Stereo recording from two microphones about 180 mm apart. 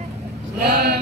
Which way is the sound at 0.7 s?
65° right (ahead or behind).